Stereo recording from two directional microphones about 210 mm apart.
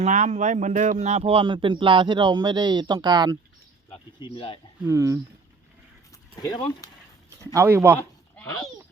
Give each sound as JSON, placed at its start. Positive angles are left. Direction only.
{"t": 0.0, "sound": "speech", "side_deg": -35}
{"t": 3.8, "sound": "speech", "side_deg": 25}
{"t": 4.8, "sound": "speech", "side_deg": -15}
{"t": 6.3, "sound": "speech", "side_deg": 20}
{"t": 7.3, "sound": "speech", "side_deg": -15}